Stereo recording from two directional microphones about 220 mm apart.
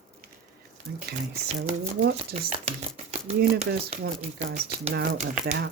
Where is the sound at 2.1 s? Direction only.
25° right (ahead or behind).